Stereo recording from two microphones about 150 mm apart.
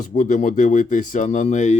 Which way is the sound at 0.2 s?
60° left (ahead or behind).